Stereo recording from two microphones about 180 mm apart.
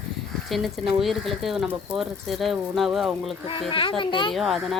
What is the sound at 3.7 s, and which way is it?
Speech, 30° left (ahead or behind).